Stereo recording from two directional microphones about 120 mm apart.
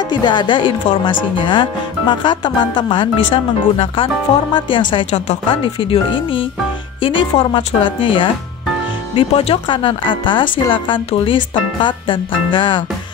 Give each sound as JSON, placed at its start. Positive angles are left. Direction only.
{"t": 0.1, "sound": "speech", "side_deg": 40}